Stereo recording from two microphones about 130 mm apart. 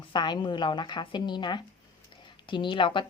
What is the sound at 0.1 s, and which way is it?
Speech, 35° left (ahead or behind).